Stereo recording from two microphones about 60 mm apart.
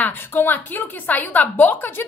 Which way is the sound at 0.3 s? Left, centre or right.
Left.